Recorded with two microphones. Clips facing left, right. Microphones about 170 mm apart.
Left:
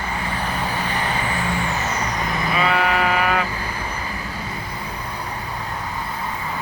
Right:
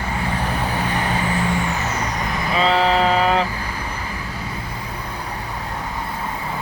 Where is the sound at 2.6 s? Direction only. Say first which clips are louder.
Right 4 dB; 25° right (ahead or behind).